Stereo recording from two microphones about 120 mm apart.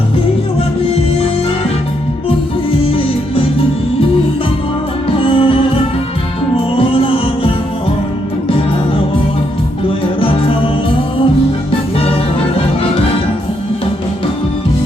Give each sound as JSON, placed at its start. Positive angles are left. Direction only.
{"t": 2.8, "sound": "music", "side_deg": 50}
{"t": 5.1, "sound": "music", "side_deg": 50}
{"t": 12.5, "sound": "music", "side_deg": 50}